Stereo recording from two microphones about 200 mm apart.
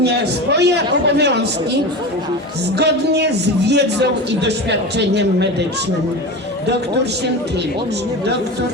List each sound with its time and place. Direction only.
0.0 s a man's voice: 55° right (ahead or behind)
2.7 s a man's voice: 55° right (ahead or behind)